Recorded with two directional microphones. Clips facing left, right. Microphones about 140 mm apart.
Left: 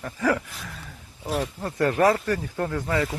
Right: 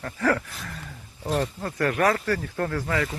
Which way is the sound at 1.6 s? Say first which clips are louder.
Left 4 dB; 25° left (ahead or behind).